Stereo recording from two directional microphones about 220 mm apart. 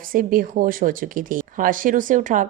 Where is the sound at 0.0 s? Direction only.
40° right (ahead or behind).